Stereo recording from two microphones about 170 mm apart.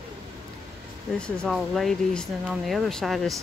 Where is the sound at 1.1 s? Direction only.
5° left (ahead or behind).